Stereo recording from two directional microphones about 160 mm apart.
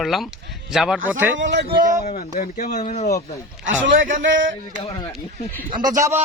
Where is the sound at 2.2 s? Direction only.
55° left (ahead or behind).